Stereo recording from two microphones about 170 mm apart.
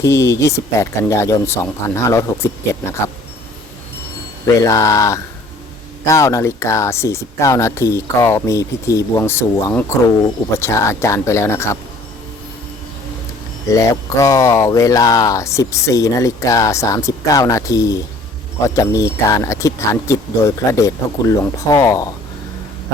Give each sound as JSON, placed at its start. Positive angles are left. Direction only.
{"t": 0.0, "sound": "speech", "side_deg": 15}
{"t": 4.4, "sound": "speech", "side_deg": 20}
{"t": 13.7, "sound": "speech", "side_deg": 20}